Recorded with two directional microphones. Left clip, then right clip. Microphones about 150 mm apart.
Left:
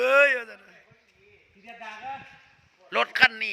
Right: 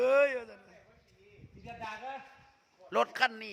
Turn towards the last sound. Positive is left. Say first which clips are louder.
# left 10 dB
turn(degrees=-20)  # may be behind; listen again after turning